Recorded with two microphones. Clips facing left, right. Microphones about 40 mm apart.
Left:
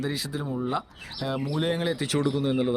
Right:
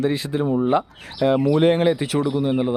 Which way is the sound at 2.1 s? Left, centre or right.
Centre.